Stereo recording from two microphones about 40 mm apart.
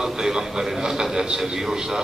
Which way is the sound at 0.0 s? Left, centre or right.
Centre.